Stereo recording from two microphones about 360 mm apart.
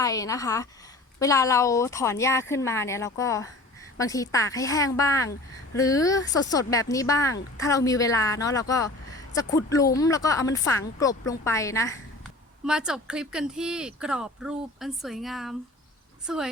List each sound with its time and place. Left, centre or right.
0.0 s speech: centre
12.6 s speech: centre